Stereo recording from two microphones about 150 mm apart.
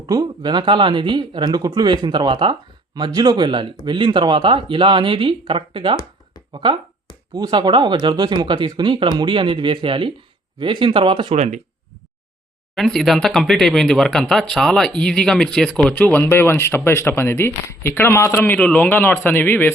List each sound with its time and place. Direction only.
0.1 s speech: 30° right (ahead or behind); by 11.6 s 45° right (ahead or behind)
12.7 s speech: centre (ahead or behind)